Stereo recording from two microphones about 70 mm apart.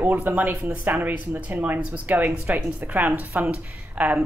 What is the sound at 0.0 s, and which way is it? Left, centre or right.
Speech, right.